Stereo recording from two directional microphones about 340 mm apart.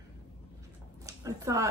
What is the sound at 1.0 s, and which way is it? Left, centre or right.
Speech, centre.